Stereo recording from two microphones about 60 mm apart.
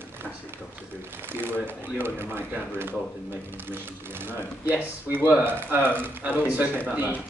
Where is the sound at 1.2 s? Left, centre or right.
Right.